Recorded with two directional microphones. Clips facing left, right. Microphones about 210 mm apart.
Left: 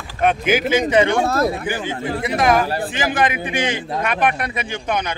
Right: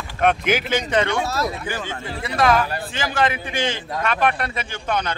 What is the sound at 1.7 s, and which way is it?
Speech, 15° left (ahead or behind).